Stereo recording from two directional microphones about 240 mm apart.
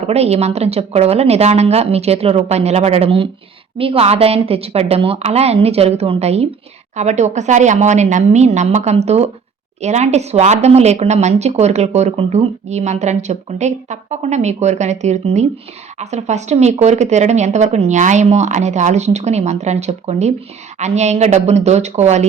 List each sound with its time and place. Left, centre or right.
0.1 s a woman's voice: right